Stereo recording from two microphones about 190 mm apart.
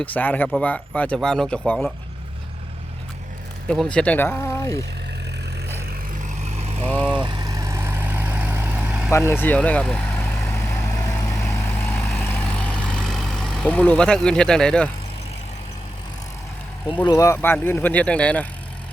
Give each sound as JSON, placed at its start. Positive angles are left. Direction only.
{"t": 0.0, "sound": "speech", "side_deg": 10}
{"t": 3.7, "sound": "speech", "side_deg": 5}
{"t": 6.2, "sound": "vehicle", "side_deg": -35}
{"t": 7.0, "sound": "vehicle", "side_deg": -5}
{"t": 7.3, "sound": "vehicle", "side_deg": -20}
{"t": 9.0, "sound": "speech", "side_deg": 15}
{"t": 11.0, "sound": "vehicle", "side_deg": 15}
{"t": 17.1, "sound": "speech", "side_deg": 15}